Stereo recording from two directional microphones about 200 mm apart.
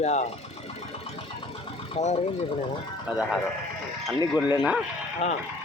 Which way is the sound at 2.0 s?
35° left (ahead or behind).